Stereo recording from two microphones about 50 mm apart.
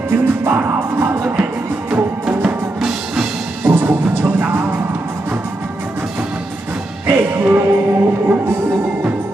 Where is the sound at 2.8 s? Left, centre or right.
Centre.